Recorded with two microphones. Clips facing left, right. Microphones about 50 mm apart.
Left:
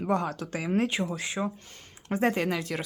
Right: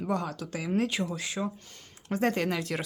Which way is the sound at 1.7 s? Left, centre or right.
Left.